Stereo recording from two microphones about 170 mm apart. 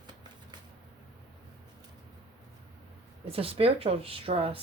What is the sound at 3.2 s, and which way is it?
Speech, 35° right (ahead or behind).